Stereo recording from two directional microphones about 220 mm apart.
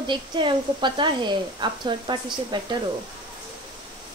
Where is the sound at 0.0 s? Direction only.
20° right (ahead or behind).